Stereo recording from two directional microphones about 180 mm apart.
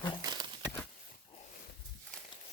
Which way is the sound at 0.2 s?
25° right (ahead or behind).